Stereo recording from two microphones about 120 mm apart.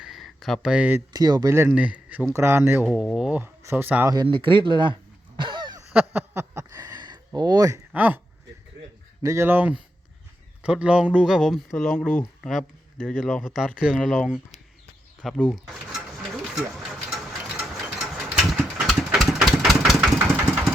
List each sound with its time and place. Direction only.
0.0 s a sound: centre (ahead or behind)
1.1 s speech: 30° right (ahead or behind)
1.7 s speech: 10° right (ahead or behind)
2.8 s a man's voice: 5° right (ahead or behind)
3.4 s speech: 20° right (ahead or behind)
4.1 s speech: 40° right (ahead or behind)
5.4 s throat clearing: 40° right (ahead or behind)
5.9 s a sound: 10° right (ahead or behind)
6.3 s a sound: 20° right (ahead or behind)
7.9 s a man's voice: 15° right (ahead or behind)
9.2 s a man's voice: 25° right (ahead or behind); by 15.4 s centre (ahead or behind)
15.5 s mechanisms: centre (ahead or behind)
17.1 s ratchet: 5° right (ahead or behind)
20.1 s vehicle: 20° right (ahead or behind)